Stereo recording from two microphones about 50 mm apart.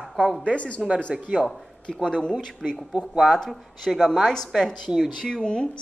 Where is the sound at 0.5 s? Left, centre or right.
Left.